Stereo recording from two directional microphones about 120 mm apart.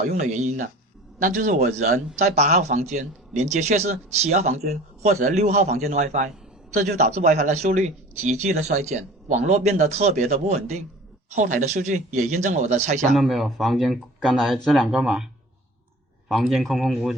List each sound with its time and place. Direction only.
0.1 s speech: 80° right
2.1 s speech: 70° right (ahead or behind); by 6.3 s 90° right
6.9 s speech: 75° right (ahead or behind)
11.3 s speech: 90° right
13.1 s speech: centre (ahead or behind)
16.3 s speech: centre (ahead or behind)